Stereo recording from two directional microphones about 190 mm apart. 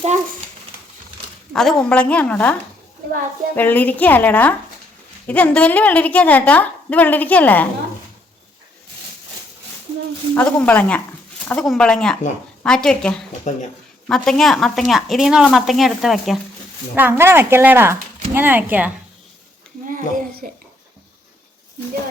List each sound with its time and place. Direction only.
1.5 s a woman's voice: 5° left (ahead or behind)
10.3 s a woman's voice: 10° left (ahead or behind)
13.5 s speech: 40° left (ahead or behind)
14.1 s a woman's voice: centre (ahead or behind)
16.9 s speech: 10° right (ahead or behind)
19.9 s a child's voice: 45° right (ahead or behind)